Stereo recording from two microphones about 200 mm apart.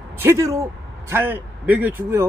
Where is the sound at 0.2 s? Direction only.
15° right (ahead or behind).